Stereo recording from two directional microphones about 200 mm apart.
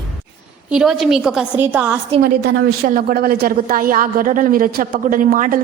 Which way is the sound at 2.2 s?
45° right (ahead or behind).